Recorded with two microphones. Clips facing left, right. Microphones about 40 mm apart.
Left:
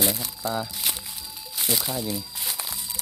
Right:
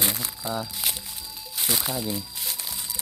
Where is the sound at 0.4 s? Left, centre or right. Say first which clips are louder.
Left 3 dB; centre.